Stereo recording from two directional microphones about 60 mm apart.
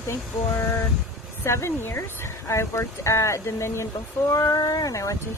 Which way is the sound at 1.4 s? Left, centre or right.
Left.